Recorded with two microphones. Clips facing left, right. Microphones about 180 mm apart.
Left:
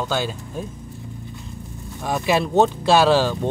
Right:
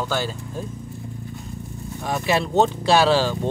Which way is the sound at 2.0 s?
10° left (ahead or behind).